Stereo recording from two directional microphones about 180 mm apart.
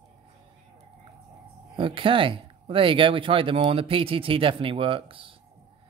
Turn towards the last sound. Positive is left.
turn(degrees=-30)  # may be behind; listen again after turning